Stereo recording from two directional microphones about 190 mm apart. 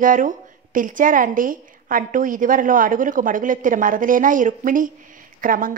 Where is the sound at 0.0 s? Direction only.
45° right (ahead or behind).